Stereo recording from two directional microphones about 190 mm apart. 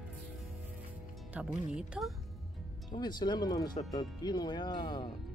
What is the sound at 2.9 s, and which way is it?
Speech, 20° left (ahead or behind).